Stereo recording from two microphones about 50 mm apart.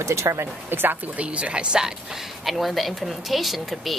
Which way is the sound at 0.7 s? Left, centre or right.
Right.